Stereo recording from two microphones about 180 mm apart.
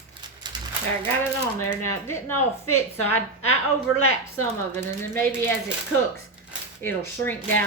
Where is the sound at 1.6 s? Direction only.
15° left (ahead or behind).